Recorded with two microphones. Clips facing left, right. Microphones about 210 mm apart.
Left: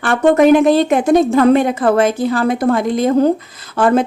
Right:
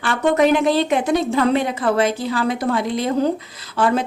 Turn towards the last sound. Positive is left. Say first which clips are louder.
# left 5 dB
turn(degrees=50)  # may be behind; listen again after turning